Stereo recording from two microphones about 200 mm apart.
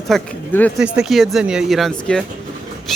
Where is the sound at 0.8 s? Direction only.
5° right (ahead or behind).